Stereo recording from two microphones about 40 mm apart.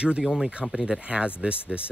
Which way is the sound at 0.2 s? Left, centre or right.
Centre.